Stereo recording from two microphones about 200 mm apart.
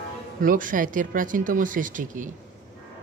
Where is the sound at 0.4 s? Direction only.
45° right (ahead or behind).